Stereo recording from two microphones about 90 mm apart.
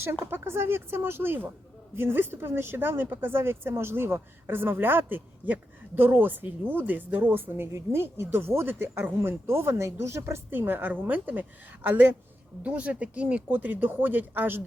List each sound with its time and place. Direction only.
0.0 s speech: 25° right (ahead or behind)